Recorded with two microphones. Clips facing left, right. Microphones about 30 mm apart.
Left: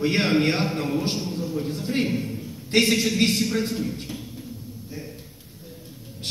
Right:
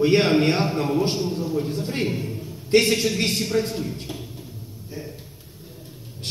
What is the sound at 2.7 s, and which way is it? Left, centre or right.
Speech, right.